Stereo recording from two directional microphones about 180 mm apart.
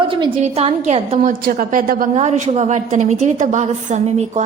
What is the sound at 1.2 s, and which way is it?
Speech, 50° right (ahead or behind).